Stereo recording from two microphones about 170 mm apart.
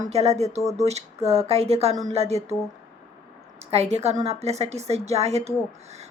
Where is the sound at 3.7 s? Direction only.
40° right (ahead or behind).